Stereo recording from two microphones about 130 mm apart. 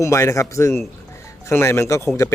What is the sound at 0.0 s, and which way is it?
Speech, 20° left (ahead or behind).